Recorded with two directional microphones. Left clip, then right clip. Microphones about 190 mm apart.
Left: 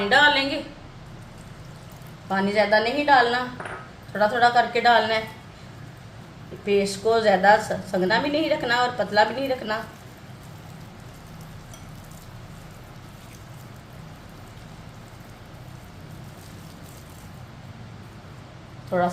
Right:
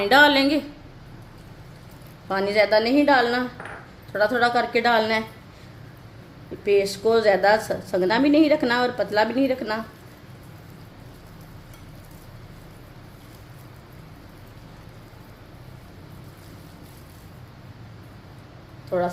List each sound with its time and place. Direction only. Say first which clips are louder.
0.0 s a woman's voice: right 2 dB; 55° right (ahead or behind)
2.3 s a woman's voice: right 1 dB; 55° right (ahead or behind)
6.7 s a woman's voice: right 2 dB; 45° right (ahead or behind)